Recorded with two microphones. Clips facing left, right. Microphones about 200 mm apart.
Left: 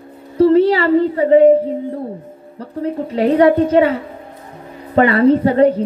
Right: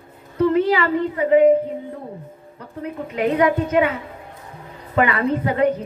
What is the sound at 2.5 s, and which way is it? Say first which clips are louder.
A woman's voice: left 8 dB; 30° left (ahead or behind).